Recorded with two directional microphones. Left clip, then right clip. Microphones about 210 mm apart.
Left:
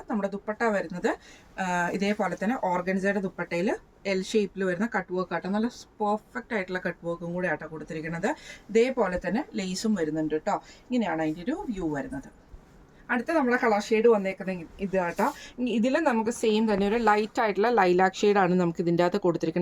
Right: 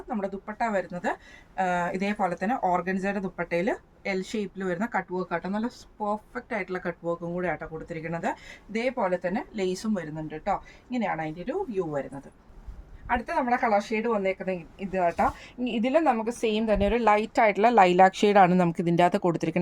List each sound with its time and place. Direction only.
0.2 s speech: 10° right (ahead or behind)
13.1 s speech: 10° right (ahead or behind); by 19.5 s 45° right (ahead or behind)